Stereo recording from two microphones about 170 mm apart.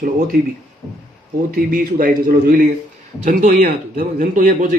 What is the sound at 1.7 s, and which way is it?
A man's voice, 60° right (ahead or behind).